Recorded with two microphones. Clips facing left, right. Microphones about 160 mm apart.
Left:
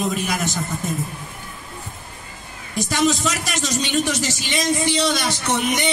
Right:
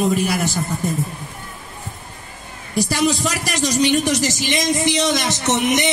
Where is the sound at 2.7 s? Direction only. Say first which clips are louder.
Right 1 dB; 10° right (ahead or behind).